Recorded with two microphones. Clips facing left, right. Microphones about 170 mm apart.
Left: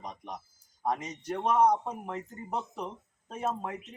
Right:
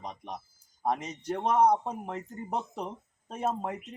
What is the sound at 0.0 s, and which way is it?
Speech, 30° right (ahead or behind).